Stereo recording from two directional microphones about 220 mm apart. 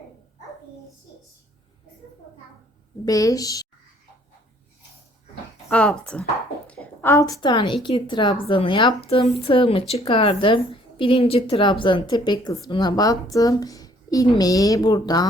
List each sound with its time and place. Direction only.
3.0 s speech: 15° left (ahead or behind)
5.6 s speech: 5° left (ahead or behind)
6.7 s a sound: 10° left (ahead or behind)
7.4 s speech: 20° left (ahead or behind)